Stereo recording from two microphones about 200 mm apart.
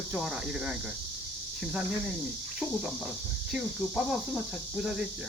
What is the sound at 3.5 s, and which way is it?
Speech, centre (ahead or behind).